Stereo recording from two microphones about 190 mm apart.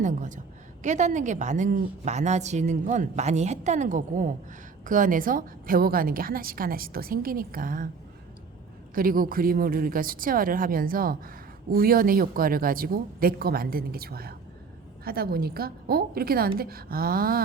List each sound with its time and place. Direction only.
0.0 s a woman's voice: 40° right (ahead or behind)
9.0 s a woman's voice: 50° right (ahead or behind)